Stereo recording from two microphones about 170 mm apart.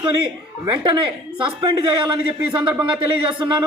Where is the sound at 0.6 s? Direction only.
30° right (ahead or behind).